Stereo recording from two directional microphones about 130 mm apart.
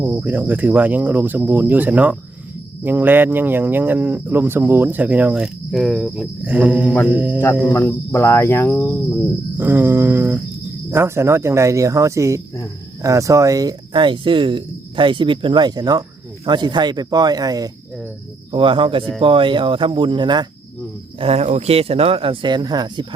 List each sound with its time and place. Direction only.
0.0 s speech: 15° right (ahead or behind)
7.7 s speech: 20° left (ahead or behind)
9.6 s speech: 15° right (ahead or behind)
13.9 s speech: 40° right (ahead or behind)
18.5 s speech: 40° right (ahead or behind)
21.2 s speech: 55° right (ahead or behind); by 23.0 s 30° right (ahead or behind)